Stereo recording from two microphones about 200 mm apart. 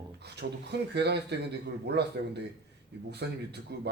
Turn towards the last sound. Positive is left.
turn(degrees=-55)  # may be behind; listen again after turning